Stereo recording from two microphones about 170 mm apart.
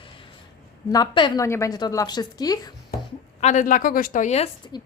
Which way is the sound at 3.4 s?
45° left (ahead or behind).